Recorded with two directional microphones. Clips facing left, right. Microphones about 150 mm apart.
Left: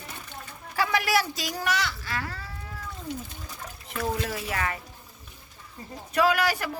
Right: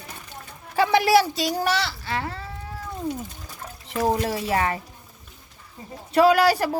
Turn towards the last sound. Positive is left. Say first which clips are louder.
# right 8 dB
turn(degrees=-35)  # may be behind; listen again after turning